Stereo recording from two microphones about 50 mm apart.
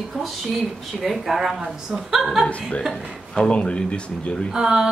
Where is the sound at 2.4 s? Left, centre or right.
Left.